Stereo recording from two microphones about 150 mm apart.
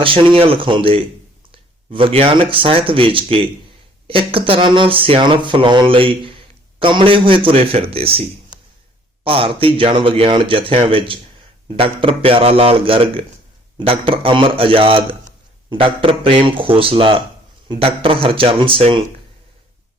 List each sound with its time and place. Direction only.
0.0 s speech: 35° right (ahead or behind)
9.2 s speech: 40° right (ahead or behind)